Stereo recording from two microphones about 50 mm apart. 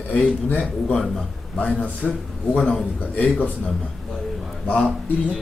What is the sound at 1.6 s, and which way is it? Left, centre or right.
A man's voice, left.